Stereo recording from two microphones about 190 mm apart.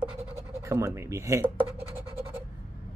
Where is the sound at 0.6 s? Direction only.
15° right (ahead or behind).